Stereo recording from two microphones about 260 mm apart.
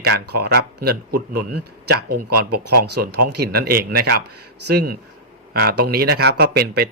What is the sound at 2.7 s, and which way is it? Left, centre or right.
Speech, right.